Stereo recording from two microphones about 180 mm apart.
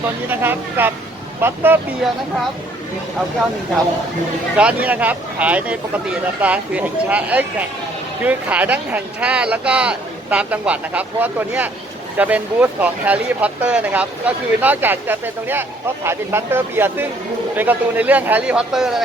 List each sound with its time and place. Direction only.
0.3 s speech: 10° right (ahead or behind)
4.5 s speech: 10° right (ahead or behind)